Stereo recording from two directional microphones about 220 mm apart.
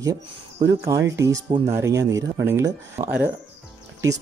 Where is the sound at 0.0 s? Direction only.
15° right (ahead or behind).